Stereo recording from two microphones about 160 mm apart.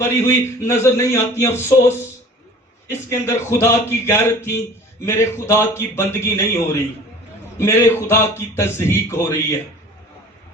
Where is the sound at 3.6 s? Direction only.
15° left (ahead or behind).